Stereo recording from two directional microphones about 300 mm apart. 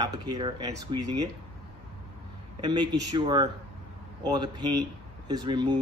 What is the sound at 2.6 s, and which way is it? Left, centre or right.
Speech, centre.